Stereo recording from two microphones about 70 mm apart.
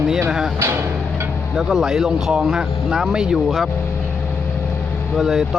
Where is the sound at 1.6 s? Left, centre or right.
Centre.